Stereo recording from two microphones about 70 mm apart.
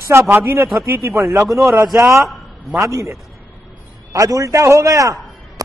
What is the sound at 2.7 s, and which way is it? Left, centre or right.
Speech, right.